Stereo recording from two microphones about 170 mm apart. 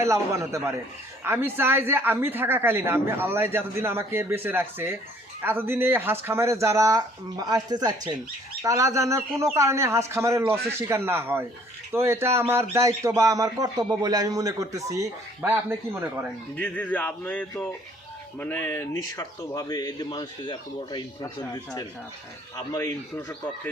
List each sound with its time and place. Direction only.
0.0 s speech: 15° right (ahead or behind)
16.6 s speech: 10° left (ahead or behind); by 21.0 s 25° left (ahead or behind)
22.5 s speech: 20° left (ahead or behind)